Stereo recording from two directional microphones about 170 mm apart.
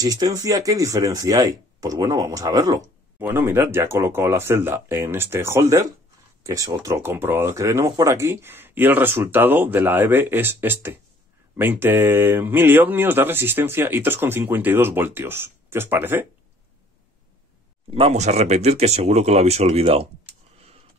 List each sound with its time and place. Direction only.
0.0 s speech: 20° right (ahead or behind)
17.9 s speech: 35° right (ahead or behind)